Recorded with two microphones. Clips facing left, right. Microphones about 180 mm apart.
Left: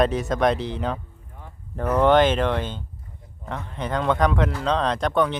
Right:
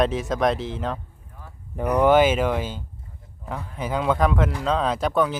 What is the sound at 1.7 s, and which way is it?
Speech, 15° right (ahead or behind).